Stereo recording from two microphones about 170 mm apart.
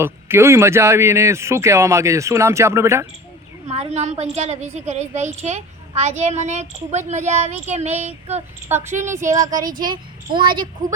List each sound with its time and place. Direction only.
0.0 s speech: 15° right (ahead or behind)
3.7 s a child's voice: 40° right (ahead or behind)
8.7 s a child's voice: 15° right (ahead or behind)